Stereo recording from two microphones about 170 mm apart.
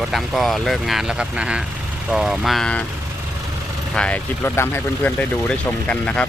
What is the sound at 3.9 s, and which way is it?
Speech, 5° left (ahead or behind).